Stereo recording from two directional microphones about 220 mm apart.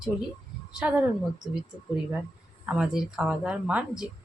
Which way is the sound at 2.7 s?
5° right (ahead or behind).